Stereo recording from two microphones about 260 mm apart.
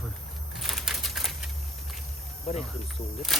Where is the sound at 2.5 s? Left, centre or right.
Left.